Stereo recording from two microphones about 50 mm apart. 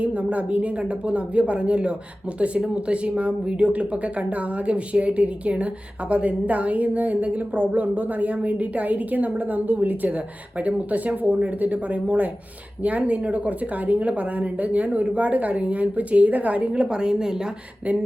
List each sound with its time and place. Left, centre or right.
0.0 s a woman's voice: right